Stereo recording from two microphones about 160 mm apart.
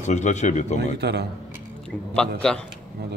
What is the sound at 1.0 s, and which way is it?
Speech, 90° right.